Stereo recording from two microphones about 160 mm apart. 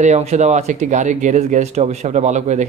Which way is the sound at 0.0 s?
45° right (ahead or behind).